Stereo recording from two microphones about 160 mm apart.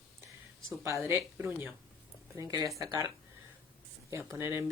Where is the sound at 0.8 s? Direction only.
15° right (ahead or behind).